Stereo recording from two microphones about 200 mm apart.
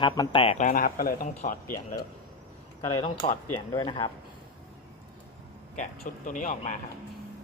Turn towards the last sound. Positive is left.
turn(degrees=40)  # may be behind; listen again after turning